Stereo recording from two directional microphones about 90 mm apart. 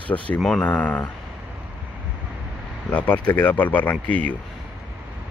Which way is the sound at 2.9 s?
20° left (ahead or behind).